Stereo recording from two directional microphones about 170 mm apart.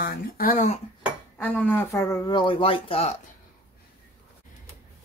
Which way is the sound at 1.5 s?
10° left (ahead or behind).